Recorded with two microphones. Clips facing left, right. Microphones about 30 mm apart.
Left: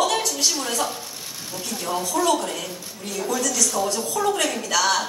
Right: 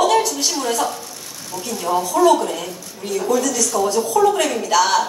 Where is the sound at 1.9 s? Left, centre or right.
Right.